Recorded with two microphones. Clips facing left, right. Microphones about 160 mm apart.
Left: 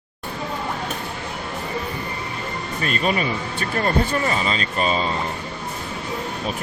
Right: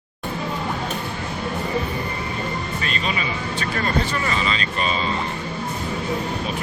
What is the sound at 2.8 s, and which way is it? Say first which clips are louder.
Speech: left 8 dB; 50° left (ahead or behind).